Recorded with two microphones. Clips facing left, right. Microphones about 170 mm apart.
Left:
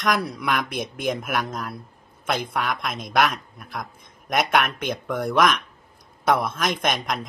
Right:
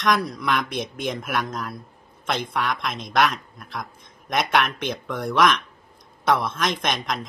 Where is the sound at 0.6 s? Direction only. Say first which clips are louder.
Even; 55° left (ahead or behind).